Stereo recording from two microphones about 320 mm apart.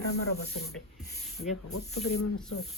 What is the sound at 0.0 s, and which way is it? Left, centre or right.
Speech, left.